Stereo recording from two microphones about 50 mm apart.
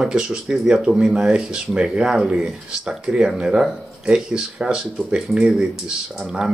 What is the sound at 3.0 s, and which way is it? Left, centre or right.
Speech, centre.